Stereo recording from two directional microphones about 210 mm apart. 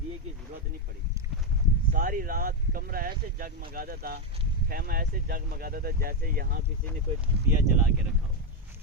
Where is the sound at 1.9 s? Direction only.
40° right (ahead or behind).